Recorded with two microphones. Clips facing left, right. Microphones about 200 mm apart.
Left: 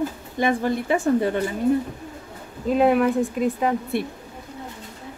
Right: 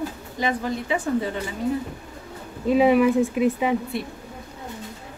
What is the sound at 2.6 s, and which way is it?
Speech, centre (ahead or behind).